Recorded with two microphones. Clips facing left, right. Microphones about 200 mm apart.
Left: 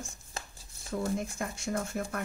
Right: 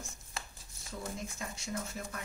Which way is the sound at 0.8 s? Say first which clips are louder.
Left 9 dB; 55° left (ahead or behind).